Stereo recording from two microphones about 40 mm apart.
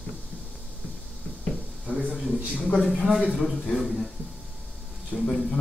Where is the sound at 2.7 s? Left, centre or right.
Centre.